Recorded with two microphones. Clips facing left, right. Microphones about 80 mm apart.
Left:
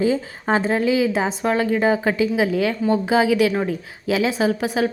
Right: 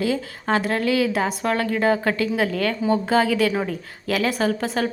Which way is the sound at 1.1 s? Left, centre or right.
Centre.